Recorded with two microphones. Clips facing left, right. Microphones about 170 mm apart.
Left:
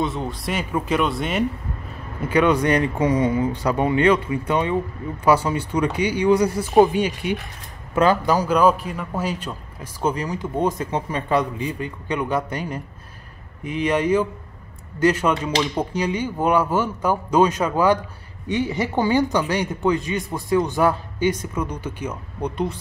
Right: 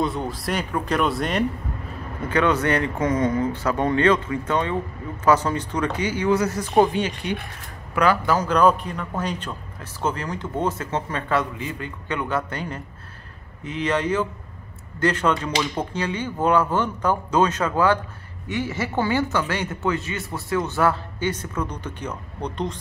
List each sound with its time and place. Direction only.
0.0 s speech: centre (ahead or behind)
2.2 s a man's voice: 10° left (ahead or behind)
7.9 s speech: 20° left (ahead or behind)
8.4 s a man's voice: 10° left (ahead or behind)